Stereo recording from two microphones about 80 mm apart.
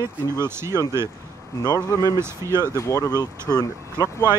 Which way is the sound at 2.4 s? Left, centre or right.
Right.